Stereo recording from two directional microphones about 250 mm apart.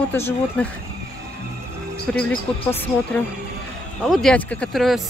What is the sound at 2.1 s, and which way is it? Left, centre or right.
Speech, centre.